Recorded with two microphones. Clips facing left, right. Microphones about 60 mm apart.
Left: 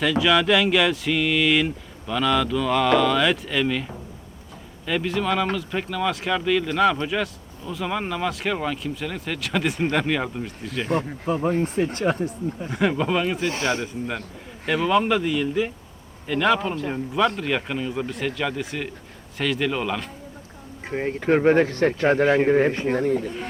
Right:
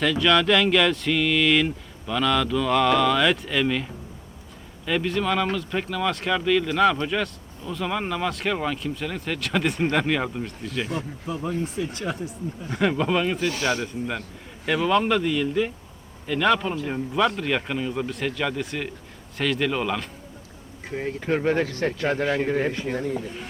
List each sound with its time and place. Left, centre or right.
0.0 s speech: centre
10.8 s speech: left
12.7 s speech: centre
13.4 s speech: left
14.7 s speech: centre
20.8 s speech: left